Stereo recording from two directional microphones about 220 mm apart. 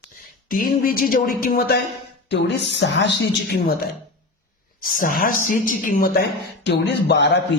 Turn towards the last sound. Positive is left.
turn(degrees=50)  # may be behind; listen again after turning